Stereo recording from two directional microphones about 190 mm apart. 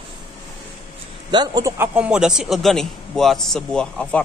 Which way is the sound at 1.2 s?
20° right (ahead or behind).